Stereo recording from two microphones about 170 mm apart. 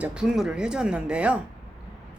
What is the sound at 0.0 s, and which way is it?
A woman's voice, 5° right (ahead or behind).